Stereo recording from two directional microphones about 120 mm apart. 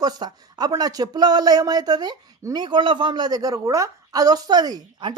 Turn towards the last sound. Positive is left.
turn(degrees=-35)  # may be behind; listen again after turning